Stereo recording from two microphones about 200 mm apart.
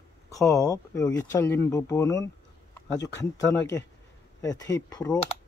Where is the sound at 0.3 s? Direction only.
15° left (ahead or behind).